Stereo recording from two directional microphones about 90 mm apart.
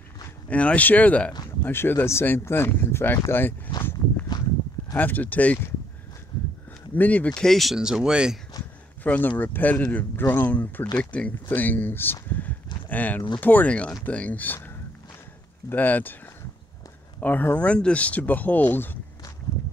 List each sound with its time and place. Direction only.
0.5 s speech: 15° left (ahead or behind)
4.3 s a sound: 50° left (ahead or behind)
4.9 s speech: 20° left (ahead or behind)
7.0 s speech: 15° left (ahead or behind); by 8.4 s 10° right (ahead or behind)
9.0 s speech: 20° left (ahead or behind)
15.7 s speech: 20° left (ahead or behind)
17.2 s speech: 20° left (ahead or behind)